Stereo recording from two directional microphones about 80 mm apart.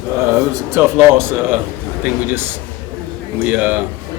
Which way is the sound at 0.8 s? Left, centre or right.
Right.